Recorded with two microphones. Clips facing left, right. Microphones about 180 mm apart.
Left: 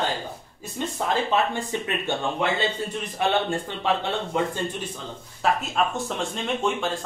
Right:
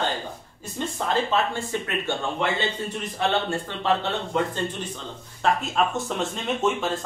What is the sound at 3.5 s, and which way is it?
Speech, 15° left (ahead or behind).